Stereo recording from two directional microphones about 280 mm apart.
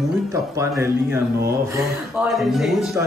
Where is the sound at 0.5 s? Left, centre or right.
Centre.